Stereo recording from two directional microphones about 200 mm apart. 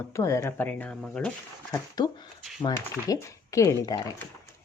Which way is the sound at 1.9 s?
20° left (ahead or behind).